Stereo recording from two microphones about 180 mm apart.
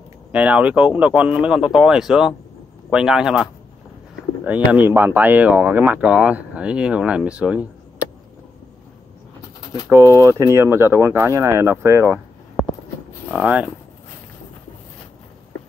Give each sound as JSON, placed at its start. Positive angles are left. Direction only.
{"t": 0.3, "sound": "a man's voice", "side_deg": -5}
{"t": 4.5, "sound": "speech", "side_deg": -10}
{"t": 9.8, "sound": "speech", "side_deg": -20}
{"t": 13.3, "sound": "speech", "side_deg": -5}